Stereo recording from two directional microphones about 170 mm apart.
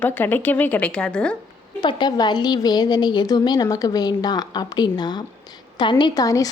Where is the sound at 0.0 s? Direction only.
10° left (ahead or behind).